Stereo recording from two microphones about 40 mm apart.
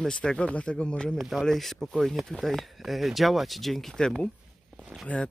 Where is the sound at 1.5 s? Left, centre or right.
Centre.